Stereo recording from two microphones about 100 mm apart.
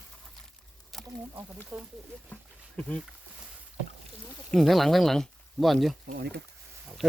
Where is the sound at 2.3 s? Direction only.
10° left (ahead or behind).